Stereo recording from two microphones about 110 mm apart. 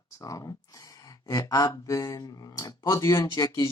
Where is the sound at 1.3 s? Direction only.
35° left (ahead or behind).